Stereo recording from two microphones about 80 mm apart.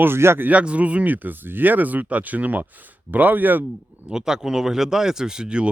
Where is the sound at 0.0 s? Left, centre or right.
Right.